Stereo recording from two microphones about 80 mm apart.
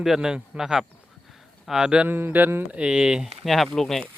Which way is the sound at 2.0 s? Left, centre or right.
Right.